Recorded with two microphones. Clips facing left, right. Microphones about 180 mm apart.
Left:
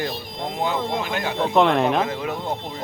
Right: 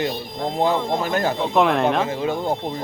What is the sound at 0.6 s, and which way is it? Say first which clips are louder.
Speech: right 4 dB; 40° right (ahead or behind).